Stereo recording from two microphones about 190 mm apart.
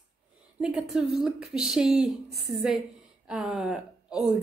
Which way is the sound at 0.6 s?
5° right (ahead or behind).